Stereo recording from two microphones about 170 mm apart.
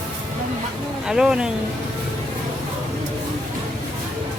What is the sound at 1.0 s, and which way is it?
Speech, 5° right (ahead or behind).